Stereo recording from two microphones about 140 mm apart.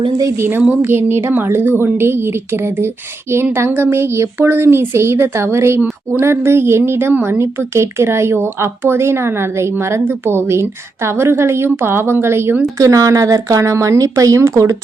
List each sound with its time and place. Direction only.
0.2 s speech: 20° right (ahead or behind)
3.3 s speech: 15° right (ahead or behind)